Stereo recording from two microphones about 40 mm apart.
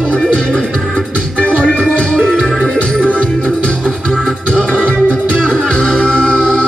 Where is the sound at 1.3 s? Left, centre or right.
Left.